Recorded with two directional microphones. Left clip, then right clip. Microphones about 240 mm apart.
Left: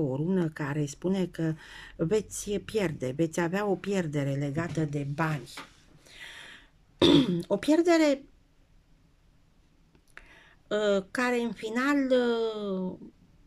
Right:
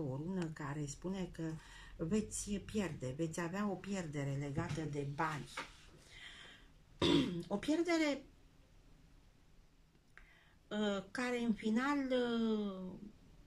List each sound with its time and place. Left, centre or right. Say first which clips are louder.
0.1 s speech: left 13 dB; left
6.0 s throat clearing: left 10 dB; left
10.1 s speech: left 12 dB; left